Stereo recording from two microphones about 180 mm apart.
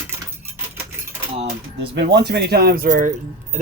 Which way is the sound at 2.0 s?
65° right (ahead or behind).